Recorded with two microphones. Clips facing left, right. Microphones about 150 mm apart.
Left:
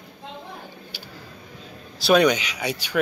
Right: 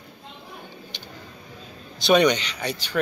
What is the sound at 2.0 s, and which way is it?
Speech, 5° left (ahead or behind).